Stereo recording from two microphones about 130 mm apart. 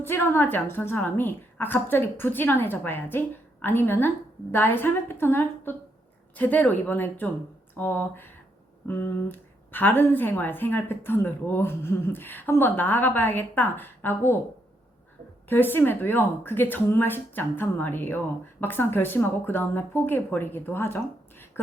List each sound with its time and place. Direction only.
0.0 s a woman's voice: 15° left (ahead or behind)
15.4 s a woman's voice: 15° left (ahead or behind)